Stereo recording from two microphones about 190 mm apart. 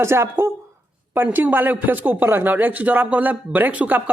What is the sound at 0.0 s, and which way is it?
A man's voice, 15° right (ahead or behind).